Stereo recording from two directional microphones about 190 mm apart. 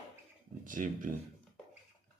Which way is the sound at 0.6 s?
45° right (ahead or behind).